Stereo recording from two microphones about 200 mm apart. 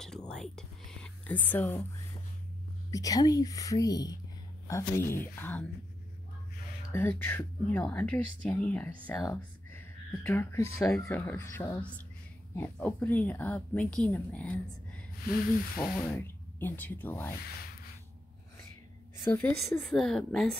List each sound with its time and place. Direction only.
0.3 s whispering: 5° left (ahead or behind)
2.9 s speech: 15° left (ahead or behind)
6.9 s speech: 10° left (ahead or behind)
19.7 s a woman's voice: 5° left (ahead or behind)